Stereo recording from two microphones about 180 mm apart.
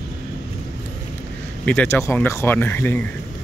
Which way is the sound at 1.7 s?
10° left (ahead or behind).